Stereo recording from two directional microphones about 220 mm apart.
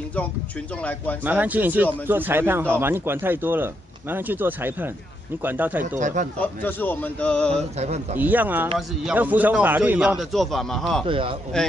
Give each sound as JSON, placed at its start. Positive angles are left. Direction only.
{"t": 1.2, "sound": "speech", "side_deg": -5}
{"t": 5.9, "sound": "speech", "side_deg": -35}
{"t": 6.4, "sound": "a man's voice", "side_deg": 10}
{"t": 7.8, "sound": "a man's voice", "side_deg": -30}
{"t": 8.2, "sound": "a man's voice", "side_deg": -10}
{"t": 11.1, "sound": "a man's voice", "side_deg": -25}
{"t": 11.5, "sound": "a man's voice", "side_deg": 5}